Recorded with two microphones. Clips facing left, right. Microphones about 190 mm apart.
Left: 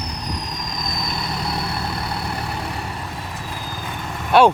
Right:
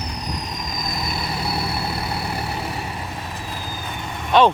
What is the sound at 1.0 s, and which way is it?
Vehicle, 5° right (ahead or behind).